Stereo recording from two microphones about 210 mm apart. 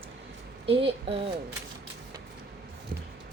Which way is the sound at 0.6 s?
25° right (ahead or behind).